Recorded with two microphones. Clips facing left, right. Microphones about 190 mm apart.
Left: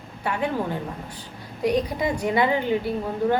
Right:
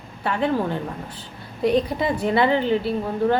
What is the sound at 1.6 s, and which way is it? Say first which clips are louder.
Speech: right 3 dB; 25° right (ahead or behind).